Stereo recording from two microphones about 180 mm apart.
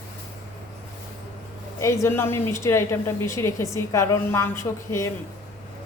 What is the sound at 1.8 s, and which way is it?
A woman's voice, 15° left (ahead or behind).